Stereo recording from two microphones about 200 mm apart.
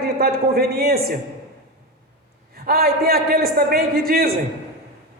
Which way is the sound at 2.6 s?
50° right (ahead or behind).